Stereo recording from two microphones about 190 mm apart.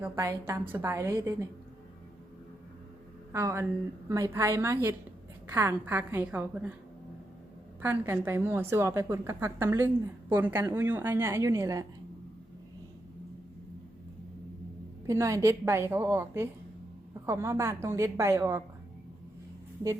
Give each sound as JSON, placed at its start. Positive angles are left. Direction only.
{"t": 0.0, "sound": "a woman's voice", "side_deg": -15}
{"t": 3.3, "sound": "a woman's voice", "side_deg": -15}
{"t": 7.8, "sound": "a woman's voice", "side_deg": -10}
{"t": 15.0, "sound": "a woman's voice", "side_deg": -15}